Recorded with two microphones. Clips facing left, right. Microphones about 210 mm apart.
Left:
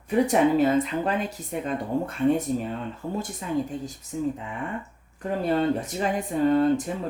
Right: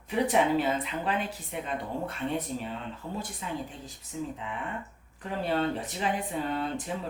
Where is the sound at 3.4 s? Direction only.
45° left (ahead or behind).